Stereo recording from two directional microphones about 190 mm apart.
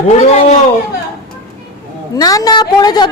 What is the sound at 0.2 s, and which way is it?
Speech, 35° left (ahead or behind).